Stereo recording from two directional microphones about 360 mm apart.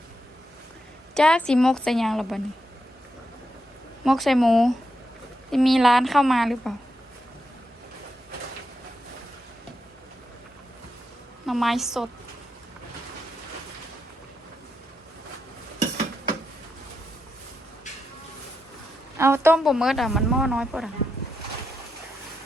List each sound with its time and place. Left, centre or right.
1.1 s a man's voice: centre
4.0 s a man's voice: centre
11.4 s a man's voice: centre
15.8 s dishes: centre
19.1 s a man's voice: centre